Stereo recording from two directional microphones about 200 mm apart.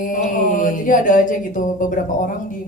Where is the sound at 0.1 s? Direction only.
40° left (ahead or behind).